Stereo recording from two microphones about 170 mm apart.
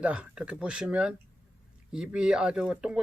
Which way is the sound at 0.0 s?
5° right (ahead or behind).